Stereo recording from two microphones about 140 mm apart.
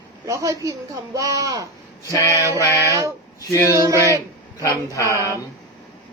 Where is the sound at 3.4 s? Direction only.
20° left (ahead or behind).